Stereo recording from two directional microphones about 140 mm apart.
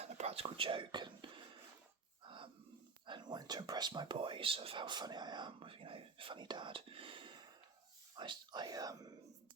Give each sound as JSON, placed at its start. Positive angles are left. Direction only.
{"t": 0.0, "sound": "whispering", "side_deg": -50}
{"t": 2.2, "sound": "a sound", "side_deg": -35}
{"t": 3.1, "sound": "speech", "side_deg": -30}